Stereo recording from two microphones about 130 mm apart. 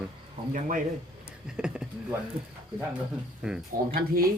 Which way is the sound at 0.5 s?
90° right.